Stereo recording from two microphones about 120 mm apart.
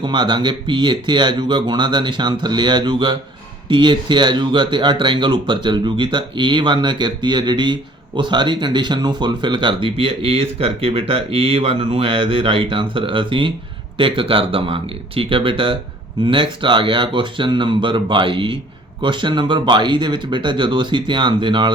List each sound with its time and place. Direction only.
0.0 s speech: 40° right (ahead or behind)